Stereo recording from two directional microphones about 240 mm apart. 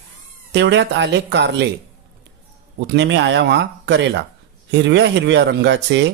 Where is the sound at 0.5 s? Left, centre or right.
Right.